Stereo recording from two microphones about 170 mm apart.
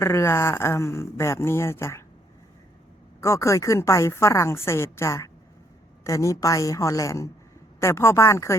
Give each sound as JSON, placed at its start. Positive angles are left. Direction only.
{"t": 0.0, "sound": "a woman's voice", "side_deg": 15}
{"t": 3.2, "sound": "a woman's voice", "side_deg": 15}